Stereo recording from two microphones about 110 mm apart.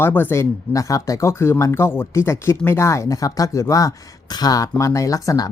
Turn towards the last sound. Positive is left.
turn(degrees=30)  # may be behind; listen again after turning